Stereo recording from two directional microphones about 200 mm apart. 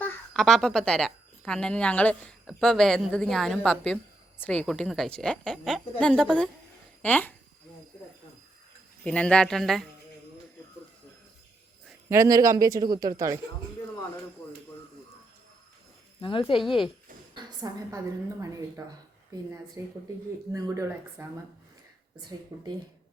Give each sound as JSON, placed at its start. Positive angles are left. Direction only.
{"t": 0.0, "sound": "a woman's voice", "side_deg": 0}
{"t": 9.0, "sound": "a woman's voice", "side_deg": 5}
{"t": 11.9, "sound": "speech", "side_deg": -15}
{"t": 16.2, "sound": "speech", "side_deg": 25}
{"t": 16.6, "sound": "a woman's voice", "side_deg": 0}
{"t": 17.3, "sound": "speech", "side_deg": -20}
{"t": 19.8, "sound": "speech", "side_deg": -15}